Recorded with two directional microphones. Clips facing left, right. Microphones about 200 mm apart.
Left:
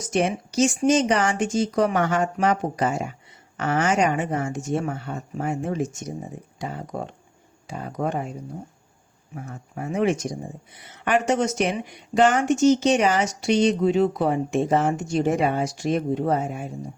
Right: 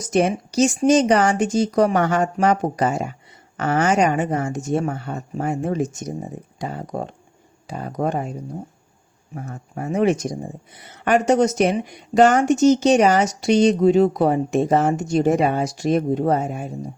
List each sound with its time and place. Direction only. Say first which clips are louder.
0.1 s speech: right 4 dB; 40° right (ahead or behind)
9.3 s speech: right 3 dB; 40° right (ahead or behind)